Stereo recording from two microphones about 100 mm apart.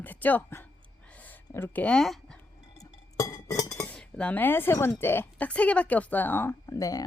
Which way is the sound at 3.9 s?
10° left (ahead or behind).